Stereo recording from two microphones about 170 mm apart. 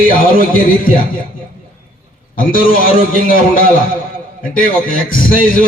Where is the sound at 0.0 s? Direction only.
55° left (ahead or behind).